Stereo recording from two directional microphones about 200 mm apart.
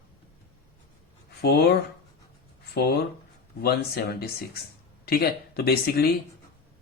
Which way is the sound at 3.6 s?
50° left (ahead or behind).